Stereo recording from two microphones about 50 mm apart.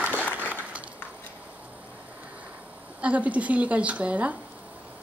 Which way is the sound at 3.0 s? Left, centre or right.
Right.